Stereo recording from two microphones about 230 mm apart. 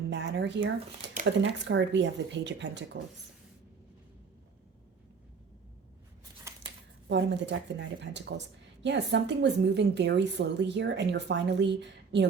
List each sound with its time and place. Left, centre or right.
0.1 s a woman's voice: right
7.1 s a woman's voice: right